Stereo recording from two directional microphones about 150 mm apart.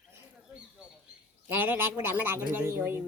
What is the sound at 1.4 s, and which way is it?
Speech, 15° right (ahead or behind).